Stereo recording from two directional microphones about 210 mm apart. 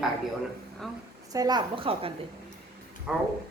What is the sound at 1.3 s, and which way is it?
Speech, 20° right (ahead or behind).